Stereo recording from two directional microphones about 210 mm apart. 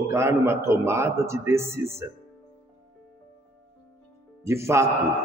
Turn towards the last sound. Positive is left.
turn(degrees=-15)  # may be behind; listen again after turning